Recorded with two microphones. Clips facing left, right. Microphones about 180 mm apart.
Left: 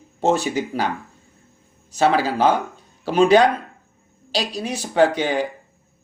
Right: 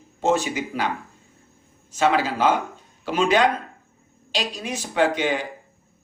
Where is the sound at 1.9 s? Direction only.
35° left (ahead or behind).